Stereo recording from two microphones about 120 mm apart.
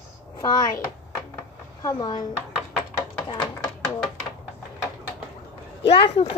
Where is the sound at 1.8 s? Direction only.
35° left (ahead or behind).